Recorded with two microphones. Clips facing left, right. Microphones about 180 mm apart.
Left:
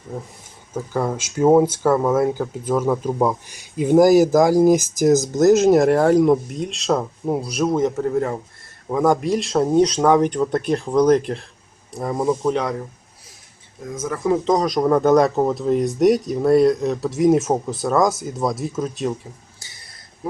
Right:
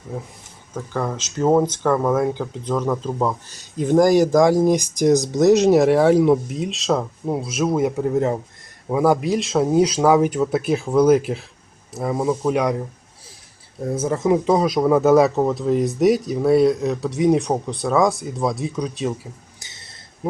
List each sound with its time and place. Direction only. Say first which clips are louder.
0.7 s speech: left 2 dB; 10° left (ahead or behind); by 8.4 s 20° right (ahead or behind)
8.9 s speech: even; 5° right (ahead or behind)
13.8 s speech: right 3 dB; 30° right (ahead or behind); by 19.3 s centre (ahead or behind)
19.5 s a sound: right 1 dB; 20° right (ahead or behind)